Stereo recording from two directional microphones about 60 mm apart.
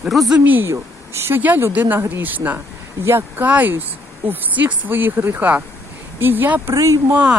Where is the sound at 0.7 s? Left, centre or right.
Right.